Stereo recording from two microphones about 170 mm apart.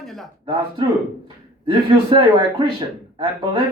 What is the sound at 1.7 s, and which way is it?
A man's voice, 25° right (ahead or behind).